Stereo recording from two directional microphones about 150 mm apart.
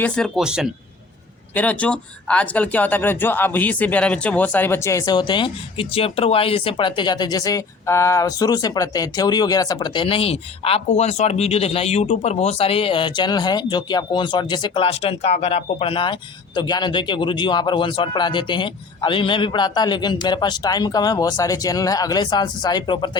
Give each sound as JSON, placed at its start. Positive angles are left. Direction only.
{"t": 0.3, "sound": "speech", "side_deg": -5}
{"t": 1.5, "sound": "speech", "side_deg": 10}